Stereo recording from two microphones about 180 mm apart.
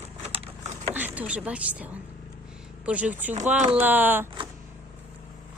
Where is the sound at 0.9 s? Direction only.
10° right (ahead or behind).